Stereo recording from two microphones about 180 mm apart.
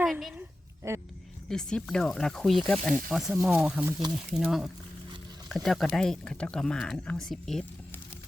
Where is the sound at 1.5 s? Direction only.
5° left (ahead or behind).